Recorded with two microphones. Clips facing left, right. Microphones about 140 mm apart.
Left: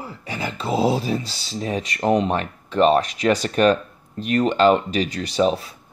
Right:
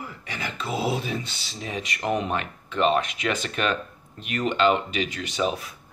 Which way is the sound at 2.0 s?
35° left (ahead or behind).